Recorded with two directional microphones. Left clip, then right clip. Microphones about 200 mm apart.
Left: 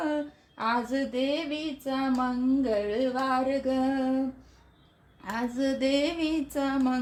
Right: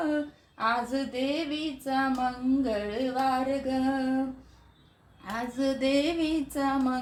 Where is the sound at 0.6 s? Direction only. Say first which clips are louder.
Even; 45° left (ahead or behind).